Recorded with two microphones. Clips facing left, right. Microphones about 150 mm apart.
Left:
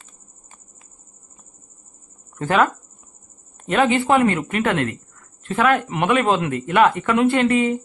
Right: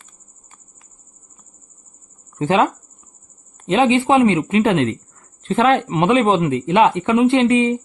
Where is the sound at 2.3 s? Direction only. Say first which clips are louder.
Right 2 dB; 20° right (ahead or behind).